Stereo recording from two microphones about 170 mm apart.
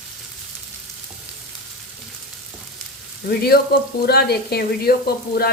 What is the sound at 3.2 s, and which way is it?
Frying, 70° left (ahead or behind).